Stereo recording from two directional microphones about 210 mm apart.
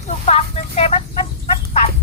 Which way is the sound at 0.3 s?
30° left (ahead or behind).